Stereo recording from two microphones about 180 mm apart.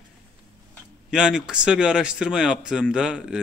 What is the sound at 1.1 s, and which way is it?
A man's voice, 5° right (ahead or behind).